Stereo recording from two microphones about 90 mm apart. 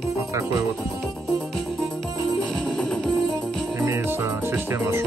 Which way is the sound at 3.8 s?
30° right (ahead or behind).